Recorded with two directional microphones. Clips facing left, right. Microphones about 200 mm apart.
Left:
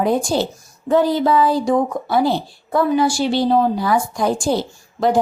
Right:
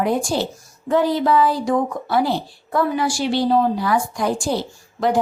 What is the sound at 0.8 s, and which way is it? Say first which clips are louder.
A woman's voice: left 2 dB; 25° left (ahead or behind).